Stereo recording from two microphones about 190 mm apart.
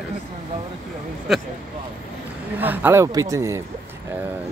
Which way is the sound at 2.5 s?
10° right (ahead or behind).